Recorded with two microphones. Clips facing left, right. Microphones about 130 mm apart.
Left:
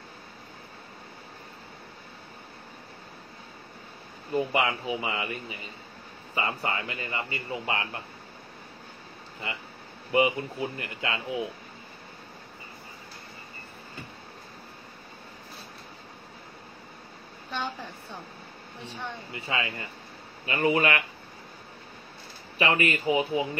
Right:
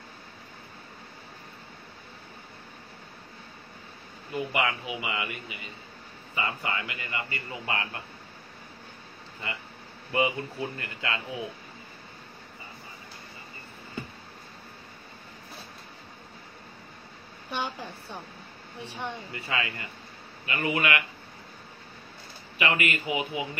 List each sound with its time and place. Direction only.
4.3 s a man's voice: 30° left (ahead or behind)
10.1 s speech: 20° left (ahead or behind)
17.5 s a woman's voice: 10° right (ahead or behind)
19.3 s speech: 25° left (ahead or behind)
20.4 s a man's voice: 35° left (ahead or behind)
22.6 s a man's voice: 35° left (ahead or behind)